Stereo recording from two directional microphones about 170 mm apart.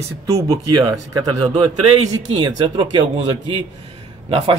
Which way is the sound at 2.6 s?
30° right (ahead or behind).